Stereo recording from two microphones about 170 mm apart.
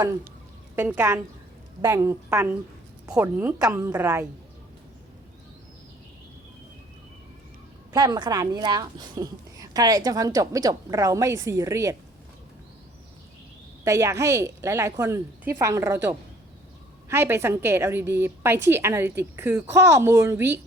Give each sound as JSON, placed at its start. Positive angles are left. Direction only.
{"t": 0.8, "sound": "a woman's voice", "side_deg": -10}
{"t": 7.9, "sound": "a woman's voice", "side_deg": -25}
{"t": 13.8, "sound": "a woman's voice", "side_deg": -15}